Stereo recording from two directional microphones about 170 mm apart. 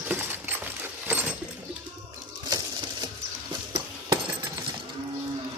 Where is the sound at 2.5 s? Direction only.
25° right (ahead or behind).